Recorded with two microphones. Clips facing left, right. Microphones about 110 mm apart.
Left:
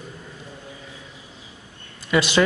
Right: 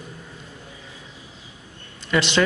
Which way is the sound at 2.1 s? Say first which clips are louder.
Left 1 dB; 10° left (ahead or behind).